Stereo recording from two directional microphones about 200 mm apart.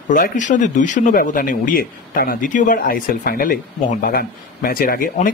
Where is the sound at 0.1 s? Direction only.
40° left (ahead or behind).